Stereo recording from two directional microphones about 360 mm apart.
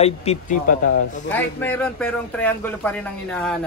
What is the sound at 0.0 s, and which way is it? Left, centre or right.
Speech, centre.